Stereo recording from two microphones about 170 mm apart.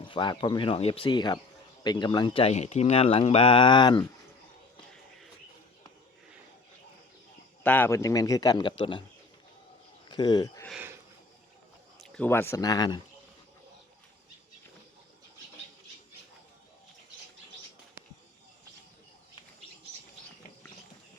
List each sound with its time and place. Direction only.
0.0 s a man's voice: 30° left (ahead or behind)
7.6 s a man's voice: 10° left (ahead or behind); by 9.0 s 30° left (ahead or behind)
10.1 s speech: 25° left (ahead or behind)
10.7 s speech: 10° right (ahead or behind)
11.9 s speech: 5° left (ahead or behind); by 13.0 s 25° left (ahead or behind)